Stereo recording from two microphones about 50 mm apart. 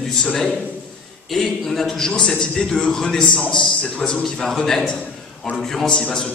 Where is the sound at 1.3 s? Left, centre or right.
Centre; by 4.2 s left.